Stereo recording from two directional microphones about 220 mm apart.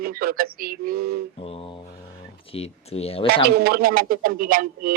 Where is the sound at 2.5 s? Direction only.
30° left (ahead or behind).